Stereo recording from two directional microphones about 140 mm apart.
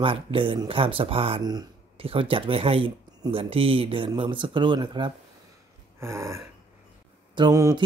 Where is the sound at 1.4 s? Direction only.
30° right (ahead or behind).